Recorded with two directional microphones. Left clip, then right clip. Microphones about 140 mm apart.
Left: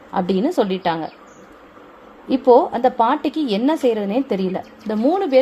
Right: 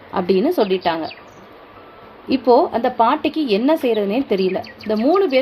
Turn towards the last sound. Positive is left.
turn(degrees=40)  # may be behind; listen again after turning